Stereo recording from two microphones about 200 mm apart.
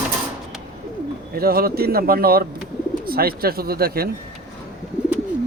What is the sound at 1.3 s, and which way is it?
Speech, 50° right (ahead or behind).